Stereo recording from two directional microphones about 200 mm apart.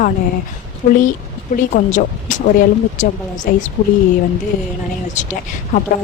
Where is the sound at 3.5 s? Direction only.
45° left (ahead or behind).